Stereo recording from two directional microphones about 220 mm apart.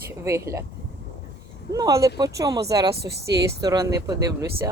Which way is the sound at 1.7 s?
15° right (ahead or behind).